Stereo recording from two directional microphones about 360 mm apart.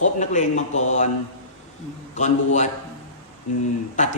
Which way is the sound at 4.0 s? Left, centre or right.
Centre.